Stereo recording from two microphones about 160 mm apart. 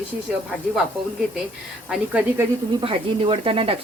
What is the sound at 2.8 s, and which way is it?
Speech, 35° right (ahead or behind).